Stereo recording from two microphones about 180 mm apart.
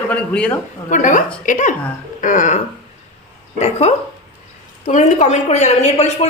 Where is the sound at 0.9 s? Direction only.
45° left (ahead or behind).